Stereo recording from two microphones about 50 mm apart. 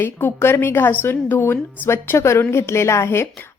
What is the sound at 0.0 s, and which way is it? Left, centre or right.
A woman's voice, left.